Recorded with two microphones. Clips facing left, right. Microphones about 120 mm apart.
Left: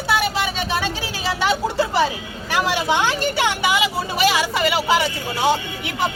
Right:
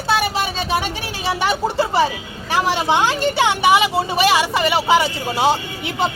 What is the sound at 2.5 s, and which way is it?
Speech, 20° right (ahead or behind).